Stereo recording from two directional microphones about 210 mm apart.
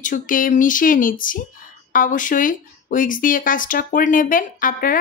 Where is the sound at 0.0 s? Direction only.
40° left (ahead or behind).